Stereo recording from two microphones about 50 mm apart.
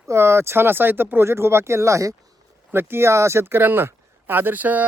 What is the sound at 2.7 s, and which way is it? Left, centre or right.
Speech, right.